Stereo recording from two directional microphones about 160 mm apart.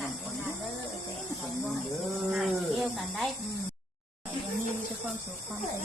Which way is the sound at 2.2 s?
Centre (ahead or behind).